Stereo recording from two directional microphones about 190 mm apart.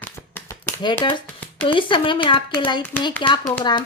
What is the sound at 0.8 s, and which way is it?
Speech, 25° left (ahead or behind).